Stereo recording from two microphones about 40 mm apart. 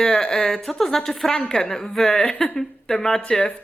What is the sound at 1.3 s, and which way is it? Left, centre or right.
Speech, left.